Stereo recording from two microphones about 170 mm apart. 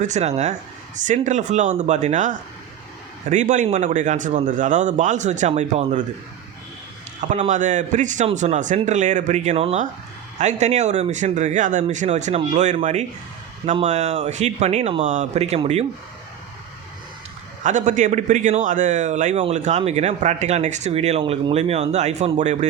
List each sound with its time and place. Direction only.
0.0 s speech: 40° right (ahead or behind)
7.2 s a man's voice: 40° right (ahead or behind)
17.6 s a man's voice: 45° right (ahead or behind)